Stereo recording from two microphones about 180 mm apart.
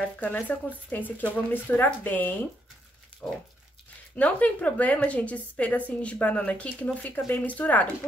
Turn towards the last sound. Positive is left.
turn(degrees=10)  # may be behind; listen again after turning